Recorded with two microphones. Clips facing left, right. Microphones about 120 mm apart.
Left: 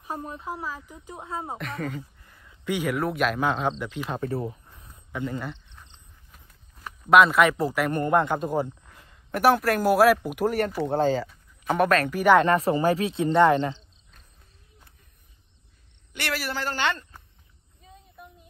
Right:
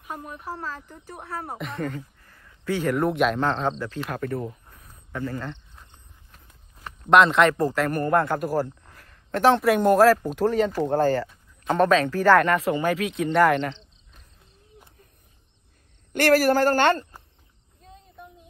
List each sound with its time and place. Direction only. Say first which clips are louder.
0.0 s speech: left 2 dB; 30° left (ahead or behind)
0.5 s speech: right 2 dB; 10° left (ahead or behind)
1.6 s speech: right 2 dB; centre (ahead or behind)
2.2 s a sound: right 2 dB; 15° left (ahead or behind)
3.0 s speech: right 3 dB; centre (ahead or behind)
4.2 s speech: even; 30° left (ahead or behind)
5.1 s speech: even; 15° left (ahead or behind)
6.3 s a sound: right 1 dB; 5° left (ahead or behind)
7.9 s a man's voice: even; 20° left (ahead or behind)
12.4 s speech: left 1 dB; 35° left (ahead or behind)
16.1 s speech: right 13 dB; 50° right (ahead or behind)
17.8 s a sound: right 2 dB; 5° left (ahead or behind)